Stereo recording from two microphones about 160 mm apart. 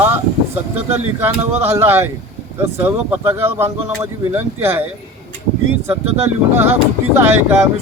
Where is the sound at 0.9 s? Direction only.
15° right (ahead or behind).